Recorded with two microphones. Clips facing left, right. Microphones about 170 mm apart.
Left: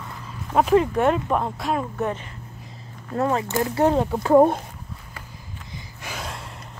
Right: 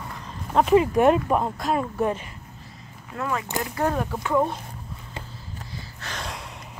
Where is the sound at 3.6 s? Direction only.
25° left (ahead or behind).